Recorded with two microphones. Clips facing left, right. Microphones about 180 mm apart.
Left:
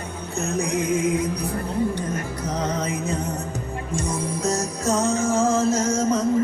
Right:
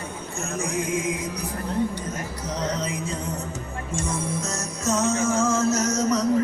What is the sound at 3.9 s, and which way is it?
Jingle bell, 35° left (ahead or behind).